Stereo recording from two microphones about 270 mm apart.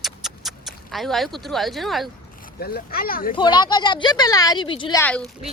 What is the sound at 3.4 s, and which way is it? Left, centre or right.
Speech, centre.